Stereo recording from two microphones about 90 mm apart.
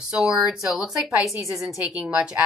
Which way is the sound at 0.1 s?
5° right (ahead or behind).